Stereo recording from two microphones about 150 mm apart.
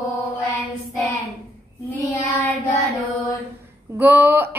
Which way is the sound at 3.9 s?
15° right (ahead or behind).